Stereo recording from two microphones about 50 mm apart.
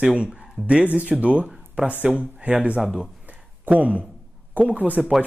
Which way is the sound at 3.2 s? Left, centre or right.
Right.